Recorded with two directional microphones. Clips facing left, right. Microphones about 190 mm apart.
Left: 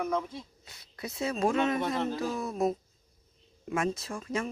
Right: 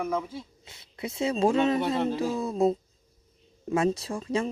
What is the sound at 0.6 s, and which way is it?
Speech, 25° right (ahead or behind).